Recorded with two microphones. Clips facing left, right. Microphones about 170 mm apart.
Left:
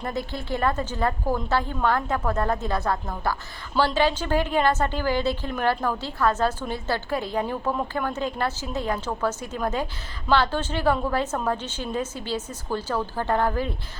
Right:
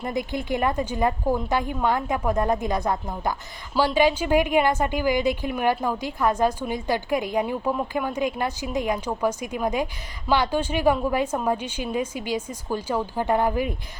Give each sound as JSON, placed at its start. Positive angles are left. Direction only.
{"t": 0.0, "sound": "a woman's voice", "side_deg": -15}